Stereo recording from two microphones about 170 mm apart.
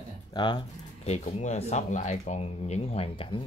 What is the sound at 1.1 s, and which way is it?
Speech, 40° left (ahead or behind).